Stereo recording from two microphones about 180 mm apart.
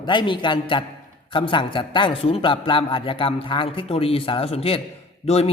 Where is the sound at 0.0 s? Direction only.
25° left (ahead or behind).